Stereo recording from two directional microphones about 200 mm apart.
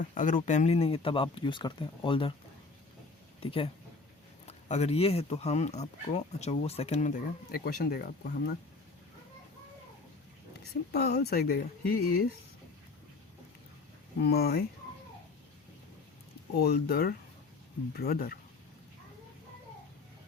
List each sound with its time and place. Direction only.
0.0 s speech: 40° left (ahead or behind); by 2.3 s 25° left (ahead or behind)
3.4 s speech: 25° left (ahead or behind); by 8.5 s 50° left (ahead or behind)
10.5 s speech: 55° left (ahead or behind)
14.2 s speech: 55° left (ahead or behind)
16.6 s speech: 50° left (ahead or behind)